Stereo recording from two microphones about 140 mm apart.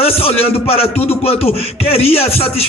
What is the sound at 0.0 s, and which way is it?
A man's voice, 45° left (ahead or behind).